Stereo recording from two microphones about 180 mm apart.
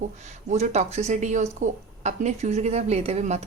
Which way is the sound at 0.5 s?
40° right (ahead or behind).